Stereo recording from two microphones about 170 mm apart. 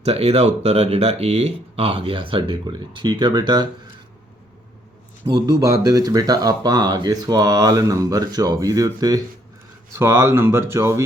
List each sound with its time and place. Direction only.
0.0 s speech: 35° right (ahead or behind)
5.2 s speech: 20° right (ahead or behind)